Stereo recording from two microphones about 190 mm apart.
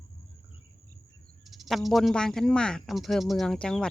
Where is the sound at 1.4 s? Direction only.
Centre (ahead or behind).